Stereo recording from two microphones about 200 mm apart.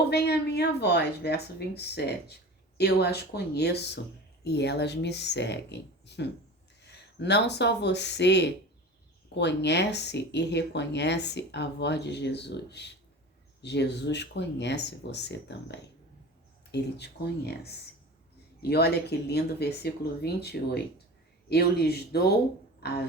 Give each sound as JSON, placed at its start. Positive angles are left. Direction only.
{"t": 0.1, "sound": "speech", "side_deg": 55}
{"t": 16.7, "sound": "speech", "side_deg": 55}
{"t": 22.8, "sound": "a sound", "side_deg": 55}